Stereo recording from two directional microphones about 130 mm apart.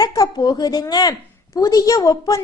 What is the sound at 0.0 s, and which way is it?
A woman's voice, 30° left (ahead or behind).